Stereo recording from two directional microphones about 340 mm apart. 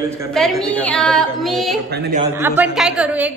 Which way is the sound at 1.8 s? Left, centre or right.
Right.